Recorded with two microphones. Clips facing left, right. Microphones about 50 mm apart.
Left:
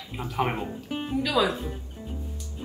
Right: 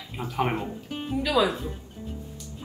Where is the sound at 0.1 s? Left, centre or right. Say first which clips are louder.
Right 1 dB; centre.